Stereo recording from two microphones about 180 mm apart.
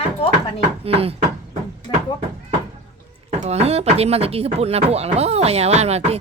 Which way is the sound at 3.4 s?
35° right (ahead or behind).